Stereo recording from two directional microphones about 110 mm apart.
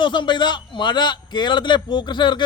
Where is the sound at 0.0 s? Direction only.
45° left (ahead or behind).